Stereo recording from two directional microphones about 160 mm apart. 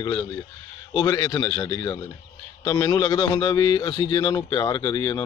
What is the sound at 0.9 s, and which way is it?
A man's voice, 25° left (ahead or behind).